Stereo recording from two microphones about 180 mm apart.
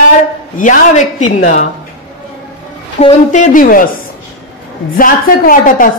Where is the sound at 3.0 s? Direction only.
40° left (ahead or behind).